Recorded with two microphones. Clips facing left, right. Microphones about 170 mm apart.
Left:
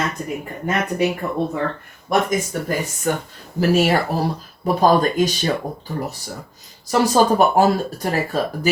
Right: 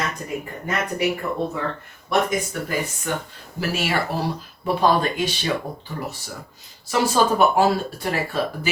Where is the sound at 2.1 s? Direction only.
45° left (ahead or behind).